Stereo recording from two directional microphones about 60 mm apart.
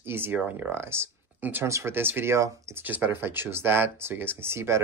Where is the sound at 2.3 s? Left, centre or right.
Right.